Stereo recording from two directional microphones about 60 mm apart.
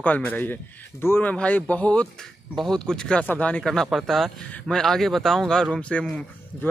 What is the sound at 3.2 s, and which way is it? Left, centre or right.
Speech, left.